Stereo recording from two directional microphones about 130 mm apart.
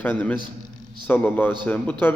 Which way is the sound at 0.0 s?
15° left (ahead or behind).